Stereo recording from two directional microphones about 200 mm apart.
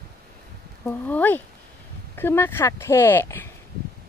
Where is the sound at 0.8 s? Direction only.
10° left (ahead or behind).